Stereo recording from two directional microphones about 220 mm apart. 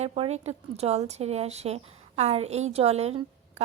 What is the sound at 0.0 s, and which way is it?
Speech, 30° right (ahead or behind).